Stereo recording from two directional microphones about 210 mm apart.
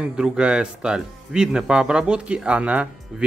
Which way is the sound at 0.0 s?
5° right (ahead or behind).